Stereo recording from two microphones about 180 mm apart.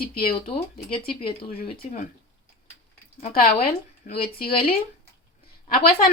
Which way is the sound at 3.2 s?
55° left (ahead or behind).